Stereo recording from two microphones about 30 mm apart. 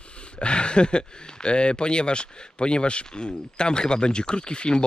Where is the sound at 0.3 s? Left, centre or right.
Left.